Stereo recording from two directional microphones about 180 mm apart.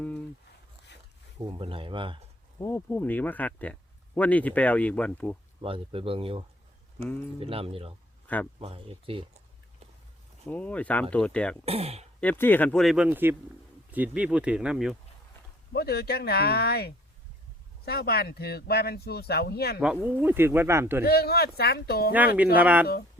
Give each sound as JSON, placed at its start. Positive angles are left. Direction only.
{"t": 1.5, "sound": "speech", "side_deg": -30}
{"t": 2.6, "sound": "speech", "side_deg": 15}
{"t": 5.6, "sound": "speech", "side_deg": -30}
{"t": 10.4, "sound": "speech", "side_deg": 5}
{"t": 11.6, "sound": "speech", "side_deg": -35}
{"t": 12.2, "sound": "speech", "side_deg": 10}
{"t": 15.7, "sound": "speech", "side_deg": 60}
{"t": 19.8, "sound": "speech", "side_deg": -5}
{"t": 21.0, "sound": "speech", "side_deg": 60}
{"t": 22.5, "sound": "speech", "side_deg": -10}